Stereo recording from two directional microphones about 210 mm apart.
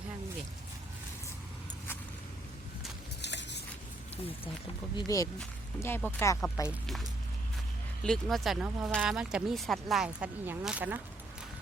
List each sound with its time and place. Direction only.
3.2 s a sound: 55° left (ahead or behind)
4.9 s speech: 15° left (ahead or behind)
6.7 s speech: centre (ahead or behind)
8.0 s speech: centre (ahead or behind)